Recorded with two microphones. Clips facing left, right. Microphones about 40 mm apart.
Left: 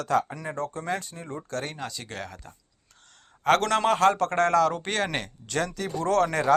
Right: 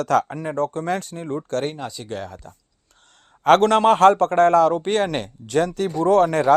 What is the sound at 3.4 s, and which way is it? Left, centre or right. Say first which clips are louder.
A man's voice: right 7 dB; right.